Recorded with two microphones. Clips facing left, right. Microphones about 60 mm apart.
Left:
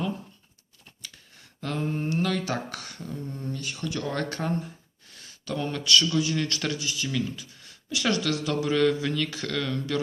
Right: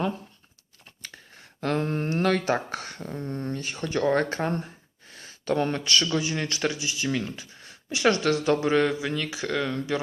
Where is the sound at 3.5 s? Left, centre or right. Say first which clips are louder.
Right 4 dB; right.